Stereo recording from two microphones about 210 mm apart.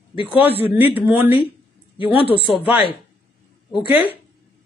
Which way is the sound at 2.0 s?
25° left (ahead or behind).